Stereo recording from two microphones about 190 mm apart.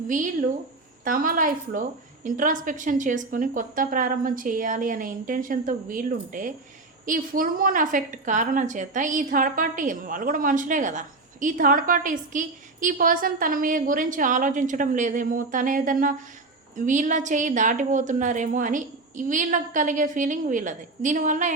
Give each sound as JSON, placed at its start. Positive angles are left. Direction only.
{"t": 0.1, "sound": "a woman's voice", "side_deg": -40}